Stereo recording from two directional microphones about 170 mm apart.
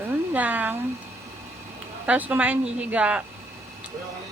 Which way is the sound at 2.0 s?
10° right (ahead or behind).